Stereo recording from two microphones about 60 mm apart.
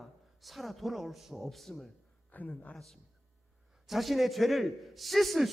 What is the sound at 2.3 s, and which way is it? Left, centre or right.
Speech, left.